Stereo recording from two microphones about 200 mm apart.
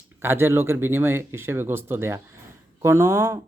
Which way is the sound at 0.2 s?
10° right (ahead or behind).